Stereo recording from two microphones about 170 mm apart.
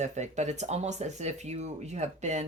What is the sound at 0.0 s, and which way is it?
Speech, 45° right (ahead or behind).